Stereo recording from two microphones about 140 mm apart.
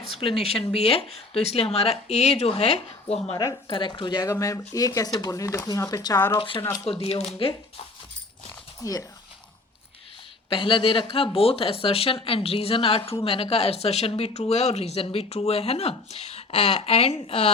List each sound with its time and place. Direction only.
0.1 s speech: 40° left (ahead or behind)
3.3 s speech: 25° left (ahead or behind)
3.7 s speech: 35° left (ahead or behind)
6.3 s speech: 35° left (ahead or behind)
6.6 s speech: 15° left (ahead or behind)
7.0 s speech: 50° left (ahead or behind)
8.8 s speech: 25° left (ahead or behind)
10.5 s speech: 40° left (ahead or behind)